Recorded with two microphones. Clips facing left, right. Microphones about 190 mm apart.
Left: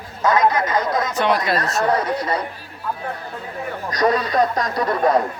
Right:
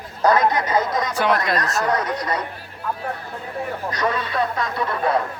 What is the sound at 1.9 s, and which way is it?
Speech, 30° left (ahead or behind).